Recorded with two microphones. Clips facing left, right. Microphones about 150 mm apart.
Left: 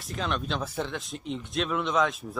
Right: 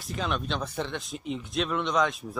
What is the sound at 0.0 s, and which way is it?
Speech, centre (ahead or behind).